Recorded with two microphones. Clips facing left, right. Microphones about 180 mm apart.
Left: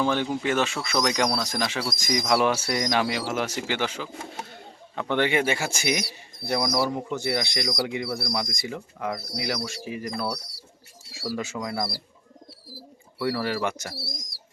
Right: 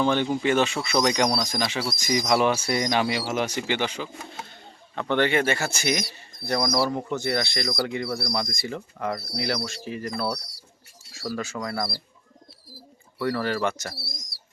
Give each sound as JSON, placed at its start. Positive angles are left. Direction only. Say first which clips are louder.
{"t": 0.0, "sound": "speech", "louder": "right 2 dB", "side_deg": 5}